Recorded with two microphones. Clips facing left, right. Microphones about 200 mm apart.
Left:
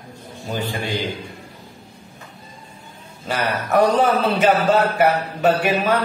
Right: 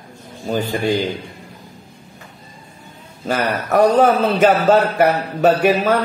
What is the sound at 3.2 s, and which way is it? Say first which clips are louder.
A man's voice: right 3 dB; 45° right (ahead or behind).